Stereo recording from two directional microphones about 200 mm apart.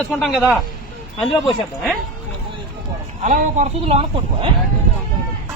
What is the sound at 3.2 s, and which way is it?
Speech, 35° right (ahead or behind).